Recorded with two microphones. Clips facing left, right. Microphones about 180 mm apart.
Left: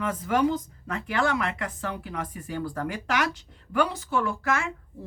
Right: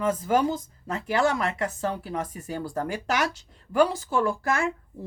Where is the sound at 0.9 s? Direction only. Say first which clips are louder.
Right 2 dB; 40° right (ahead or behind).